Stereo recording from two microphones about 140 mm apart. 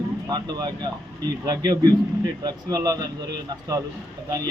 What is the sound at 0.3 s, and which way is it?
Speech, 30° right (ahead or behind).